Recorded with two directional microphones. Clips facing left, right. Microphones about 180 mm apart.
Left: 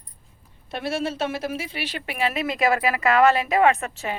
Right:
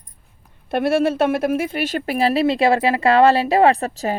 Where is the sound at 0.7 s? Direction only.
55° right (ahead or behind).